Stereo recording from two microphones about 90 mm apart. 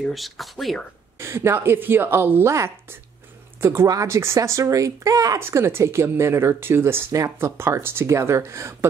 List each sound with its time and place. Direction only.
0.0 s speech: centre (ahead or behind)
1.1 s speech: 30° right (ahead or behind)
3.8 s a woman's voice: 40° right (ahead or behind)
5.4 s a woman's voice: 25° right (ahead or behind)